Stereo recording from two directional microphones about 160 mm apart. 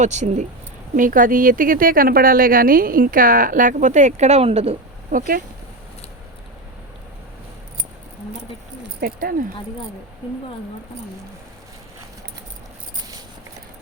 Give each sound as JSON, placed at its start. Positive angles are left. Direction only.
{"t": 0.0, "sound": "a woman's voice", "side_deg": -45}
{"t": 5.1, "sound": "a woman's voice", "side_deg": -60}
{"t": 9.0, "sound": "speech", "side_deg": -70}